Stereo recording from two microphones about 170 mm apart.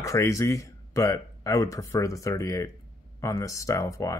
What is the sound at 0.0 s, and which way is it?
Speech, 20° left (ahead or behind).